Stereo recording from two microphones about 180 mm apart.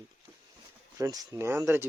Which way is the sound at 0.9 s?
20° right (ahead or behind).